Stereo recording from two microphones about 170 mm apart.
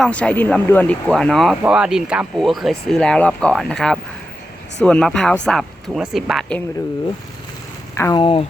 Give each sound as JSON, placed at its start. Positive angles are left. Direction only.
{"t": 0.0, "sound": "speech", "side_deg": 5}
{"t": 7.9, "sound": "speech", "side_deg": 15}
{"t": 8.2, "sound": "speech", "side_deg": 35}